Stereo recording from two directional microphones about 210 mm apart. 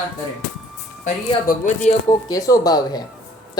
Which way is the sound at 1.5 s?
35° left (ahead or behind).